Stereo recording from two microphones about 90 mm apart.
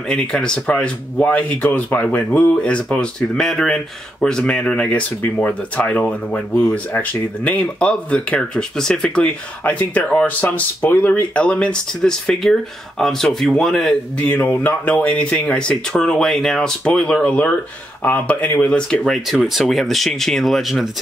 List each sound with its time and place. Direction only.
0.1 s speech: 10° left (ahead or behind)
14.1 s speech: 15° left (ahead or behind)